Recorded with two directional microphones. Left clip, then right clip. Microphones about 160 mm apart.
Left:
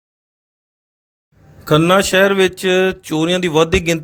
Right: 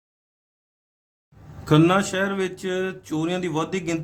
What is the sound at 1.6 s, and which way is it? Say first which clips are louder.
Speech: left 6 dB; 40° left (ahead or behind).